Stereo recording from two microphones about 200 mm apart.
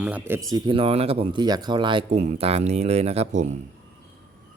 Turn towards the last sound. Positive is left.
turn(degrees=-35)  # may be behind; listen again after turning